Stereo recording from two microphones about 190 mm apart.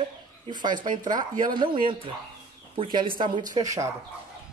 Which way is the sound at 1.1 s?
45° right (ahead or behind).